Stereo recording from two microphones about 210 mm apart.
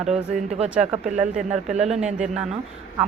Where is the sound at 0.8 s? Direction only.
30° right (ahead or behind).